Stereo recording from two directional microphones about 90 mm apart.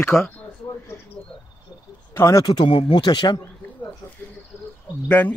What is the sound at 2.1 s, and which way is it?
Speech, 35° left (ahead or behind).